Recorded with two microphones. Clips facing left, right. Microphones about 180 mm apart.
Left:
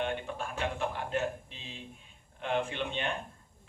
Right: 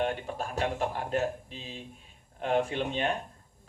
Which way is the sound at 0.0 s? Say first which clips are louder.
Right 3 dB; 40° right (ahead or behind).